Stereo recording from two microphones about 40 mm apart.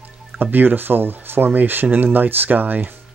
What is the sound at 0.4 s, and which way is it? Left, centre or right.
Speech, right.